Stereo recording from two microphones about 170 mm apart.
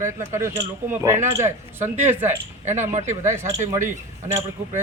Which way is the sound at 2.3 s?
45° right (ahead or behind).